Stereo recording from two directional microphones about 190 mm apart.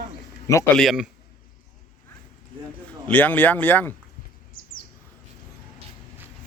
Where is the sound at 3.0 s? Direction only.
10° left (ahead or behind).